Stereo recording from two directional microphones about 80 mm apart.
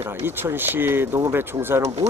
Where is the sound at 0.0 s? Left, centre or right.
Right.